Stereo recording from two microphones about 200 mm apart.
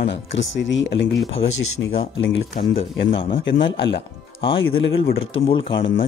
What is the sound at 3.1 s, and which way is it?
Speech, 25° left (ahead or behind).